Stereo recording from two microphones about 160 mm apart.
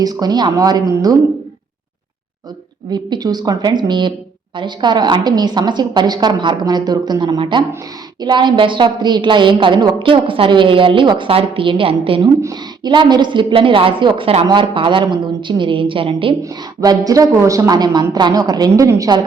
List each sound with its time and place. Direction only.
0.0 s a woman's voice: 25° right (ahead or behind)
2.9 s a woman's voice: 25° right (ahead or behind)